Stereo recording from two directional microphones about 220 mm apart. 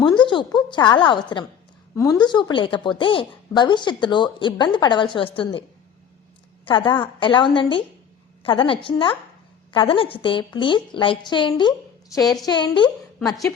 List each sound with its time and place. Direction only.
0.2 s a woman's voice: 20° left (ahead or behind)
6.7 s a woman's voice: 20° left (ahead or behind)
13.1 s a woman's voice: centre (ahead or behind)